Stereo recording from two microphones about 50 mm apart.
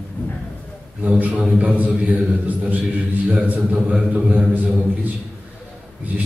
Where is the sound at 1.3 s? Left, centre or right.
Right.